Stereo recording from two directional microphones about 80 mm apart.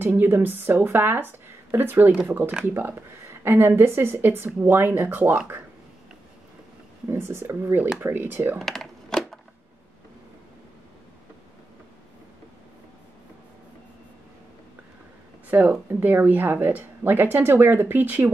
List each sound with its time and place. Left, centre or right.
0.2 s speech: right
7.1 s speech: right
8.5 s typing: centre
15.4 s a sound: right
16.0 s speech: right